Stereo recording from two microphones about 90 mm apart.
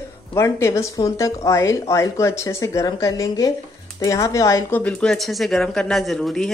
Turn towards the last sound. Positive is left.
turn(degrees=5)  # may be behind; listen again after turning